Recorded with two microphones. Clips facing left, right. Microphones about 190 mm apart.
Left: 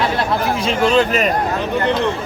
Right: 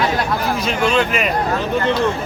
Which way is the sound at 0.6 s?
35° left (ahead or behind).